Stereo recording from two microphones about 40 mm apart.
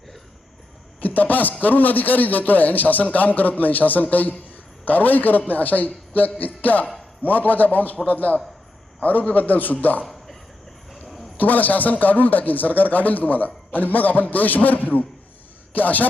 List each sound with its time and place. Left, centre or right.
1.0 s a man's voice: left
11.0 s a sound: centre
11.3 s a man's voice: left